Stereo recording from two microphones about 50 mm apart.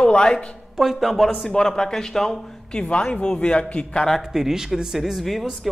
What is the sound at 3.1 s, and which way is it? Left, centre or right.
Speech, left.